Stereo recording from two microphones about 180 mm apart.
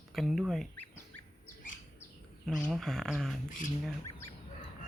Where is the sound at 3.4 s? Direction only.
45° left (ahead or behind).